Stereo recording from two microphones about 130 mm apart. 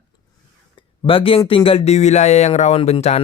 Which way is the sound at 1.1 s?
45° left (ahead or behind).